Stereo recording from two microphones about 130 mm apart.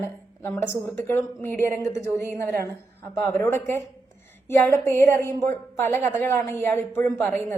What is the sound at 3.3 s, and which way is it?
A woman's voice, 20° left (ahead or behind).